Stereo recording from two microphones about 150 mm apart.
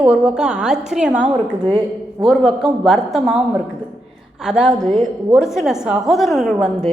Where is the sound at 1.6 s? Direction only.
25° right (ahead or behind).